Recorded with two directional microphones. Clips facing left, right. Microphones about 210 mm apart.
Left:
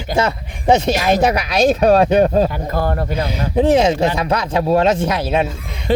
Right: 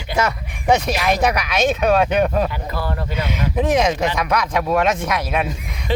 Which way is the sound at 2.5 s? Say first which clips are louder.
Left 6 dB; 45° left (ahead or behind).